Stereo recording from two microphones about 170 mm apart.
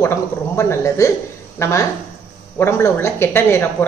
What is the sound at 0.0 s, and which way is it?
A woman's voice, 15° left (ahead or behind).